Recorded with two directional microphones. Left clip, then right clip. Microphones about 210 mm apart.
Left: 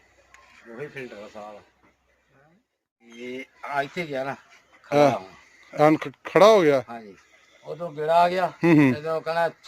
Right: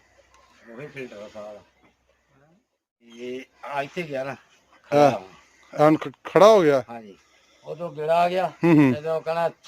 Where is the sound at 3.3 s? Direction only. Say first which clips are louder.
Left 1 dB; centre (ahead or behind).